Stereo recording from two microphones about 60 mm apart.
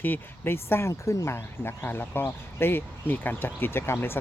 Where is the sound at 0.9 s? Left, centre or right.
Left.